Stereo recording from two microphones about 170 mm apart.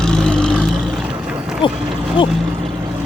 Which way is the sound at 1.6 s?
30° left (ahead or behind).